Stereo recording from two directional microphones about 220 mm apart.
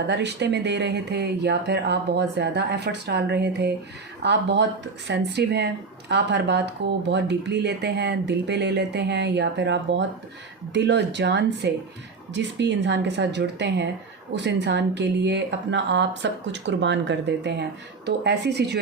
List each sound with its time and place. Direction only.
0.1 s speech: 50° right (ahead or behind)